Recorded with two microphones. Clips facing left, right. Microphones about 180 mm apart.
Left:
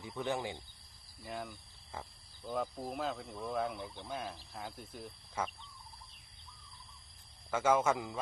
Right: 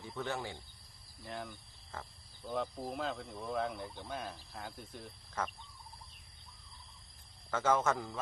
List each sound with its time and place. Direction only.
0.0 s a man's voice: 15° left (ahead or behind)
1.2 s speech: 5° left (ahead or behind)
7.5 s a man's voice: 10° left (ahead or behind)